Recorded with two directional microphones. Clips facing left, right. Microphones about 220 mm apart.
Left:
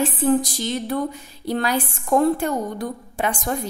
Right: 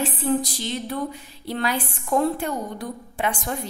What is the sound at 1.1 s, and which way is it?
A woman's voice, 45° left (ahead or behind).